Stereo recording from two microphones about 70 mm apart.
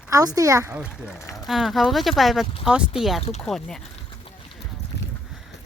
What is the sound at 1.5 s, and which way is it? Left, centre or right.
Speech, centre.